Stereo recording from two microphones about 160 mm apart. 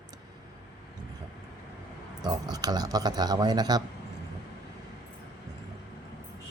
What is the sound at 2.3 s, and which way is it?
Speech, 25° right (ahead or behind).